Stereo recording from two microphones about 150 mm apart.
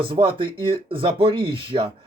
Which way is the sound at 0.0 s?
35° right (ahead or behind).